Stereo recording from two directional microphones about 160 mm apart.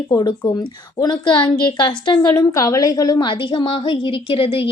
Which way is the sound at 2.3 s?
20° left (ahead or behind).